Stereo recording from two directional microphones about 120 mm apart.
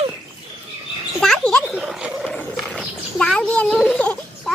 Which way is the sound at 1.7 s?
5° right (ahead or behind).